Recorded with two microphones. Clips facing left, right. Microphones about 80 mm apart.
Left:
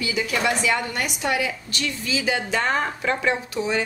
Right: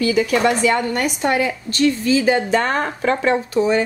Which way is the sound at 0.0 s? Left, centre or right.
Right.